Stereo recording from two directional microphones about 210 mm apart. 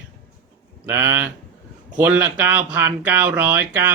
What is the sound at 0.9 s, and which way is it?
Speech, 10° right (ahead or behind).